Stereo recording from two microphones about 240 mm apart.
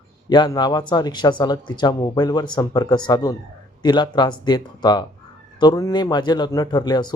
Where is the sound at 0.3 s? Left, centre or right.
Centre.